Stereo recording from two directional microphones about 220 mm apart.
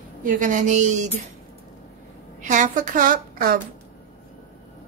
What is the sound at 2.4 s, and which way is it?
A woman's voice, 35° right (ahead or behind).